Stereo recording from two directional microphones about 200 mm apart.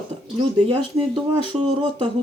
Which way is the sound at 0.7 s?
30° right (ahead or behind).